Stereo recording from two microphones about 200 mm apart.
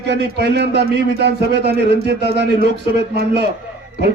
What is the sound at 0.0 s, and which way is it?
A man's voice, 55° right (ahead or behind).